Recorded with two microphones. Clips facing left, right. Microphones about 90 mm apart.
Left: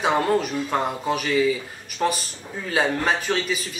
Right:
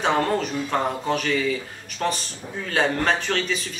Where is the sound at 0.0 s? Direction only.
5° left (ahead or behind).